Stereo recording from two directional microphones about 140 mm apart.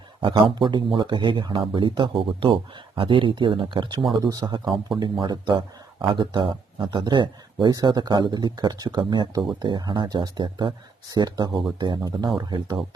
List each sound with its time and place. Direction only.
0.2 s speech: 35° right (ahead or behind)